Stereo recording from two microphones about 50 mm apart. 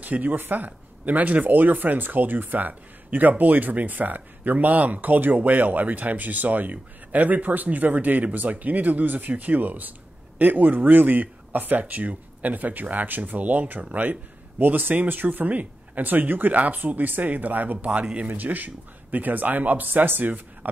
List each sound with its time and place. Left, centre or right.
0.0 s speech: right